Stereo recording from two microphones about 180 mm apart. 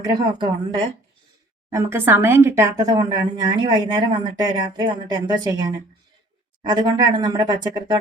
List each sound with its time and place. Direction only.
0.0 s speech: 20° right (ahead or behind)
1.7 s speech: 15° right (ahead or behind)